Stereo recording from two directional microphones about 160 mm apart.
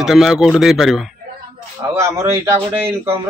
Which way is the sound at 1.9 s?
15° right (ahead or behind).